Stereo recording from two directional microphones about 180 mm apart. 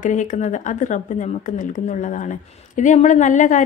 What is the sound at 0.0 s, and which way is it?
Speech, 45° left (ahead or behind).